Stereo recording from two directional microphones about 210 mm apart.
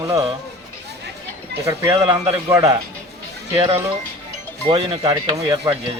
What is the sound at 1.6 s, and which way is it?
Speech, 15° right (ahead or behind).